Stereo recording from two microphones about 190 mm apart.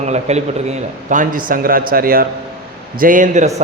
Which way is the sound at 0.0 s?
35° right (ahead or behind).